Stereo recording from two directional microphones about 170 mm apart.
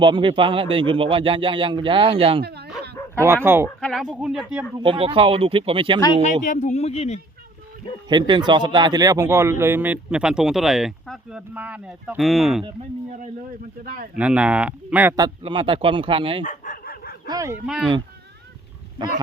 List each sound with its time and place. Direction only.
0.0 s speech: 30° right (ahead or behind)
2.4 s bow-wow: 75° right (ahead or behind)
3.4 s speech: 15° right (ahead or behind)
3.8 s a woman's voice: 5° left (ahead or behind)
4.0 s a woman's voice: 5° right (ahead or behind)
4.8 s speech: 30° right (ahead or behind)
6.4 s speech: 45° left (ahead or behind)
8.0 s speech: 25° right (ahead or behind); by 12.6 s centre (ahead or behind)
13.8 s speech: 55° right (ahead or behind)
14.2 s speech: 10° right (ahead or behind)
15.1 s speech: 25° right (ahead or behind)
16.4 s dog: 50° left (ahead or behind)
17.2 s speech: 20° right (ahead or behind)
17.7 s a woman's voice: centre (ahead or behind)